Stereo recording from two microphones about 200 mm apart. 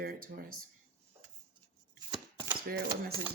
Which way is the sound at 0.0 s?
50° right (ahead or behind).